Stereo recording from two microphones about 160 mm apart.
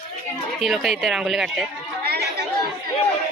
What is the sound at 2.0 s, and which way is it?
Chatter, 75° right (ahead or behind).